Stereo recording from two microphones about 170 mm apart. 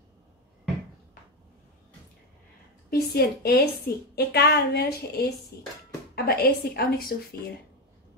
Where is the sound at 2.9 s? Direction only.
65° left (ahead or behind).